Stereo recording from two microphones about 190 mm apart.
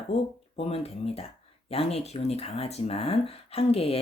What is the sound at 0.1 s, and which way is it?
Speech, 35° left (ahead or behind).